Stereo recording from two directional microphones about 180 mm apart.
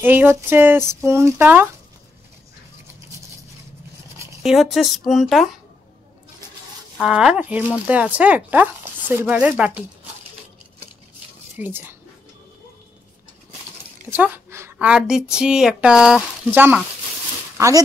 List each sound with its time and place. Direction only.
0.0 s speech: 10° right (ahead or behind)
4.4 s a woman's voice: centre (ahead or behind)
7.0 s speech: 5° right (ahead or behind)
11.5 s speech: 10° right (ahead or behind)
14.1 s a woman's voice: 10° right (ahead or behind)